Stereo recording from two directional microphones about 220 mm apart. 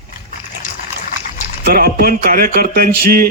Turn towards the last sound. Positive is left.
turn(degrees=-40)  # may be behind; listen again after turning